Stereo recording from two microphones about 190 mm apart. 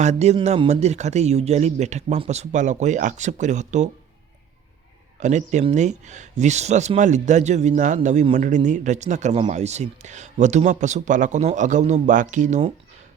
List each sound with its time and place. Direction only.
0.0 s speech: 35° right (ahead or behind)
5.2 s speech: 40° right (ahead or behind)